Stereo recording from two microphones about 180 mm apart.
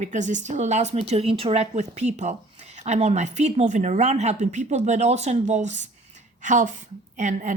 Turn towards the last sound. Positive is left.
turn(degrees=-45)  # may be behind; listen again after turning